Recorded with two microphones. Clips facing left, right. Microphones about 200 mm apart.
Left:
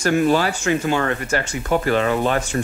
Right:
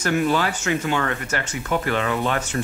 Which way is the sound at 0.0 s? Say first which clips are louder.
Left 4 dB; 35° left (ahead or behind).